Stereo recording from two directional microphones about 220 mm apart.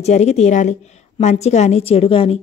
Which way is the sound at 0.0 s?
30° left (ahead or behind).